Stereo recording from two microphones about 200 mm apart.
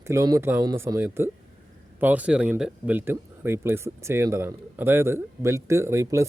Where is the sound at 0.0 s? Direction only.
15° right (ahead or behind).